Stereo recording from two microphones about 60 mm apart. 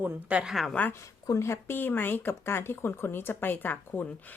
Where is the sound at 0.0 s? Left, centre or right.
Right.